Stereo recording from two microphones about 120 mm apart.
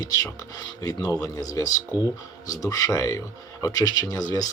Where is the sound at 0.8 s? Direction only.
30° left (ahead or behind).